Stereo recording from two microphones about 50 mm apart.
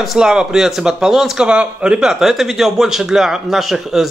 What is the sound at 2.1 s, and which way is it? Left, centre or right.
A man's voice, centre.